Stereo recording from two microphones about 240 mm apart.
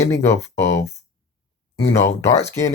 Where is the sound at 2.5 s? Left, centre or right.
Centre.